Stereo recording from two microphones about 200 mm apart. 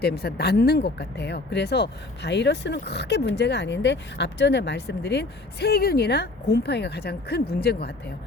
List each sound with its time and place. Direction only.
0.0 s speech: 55° left (ahead or behind)